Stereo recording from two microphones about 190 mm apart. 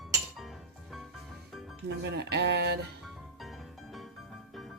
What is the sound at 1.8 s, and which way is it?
Speech, 60° right (ahead or behind).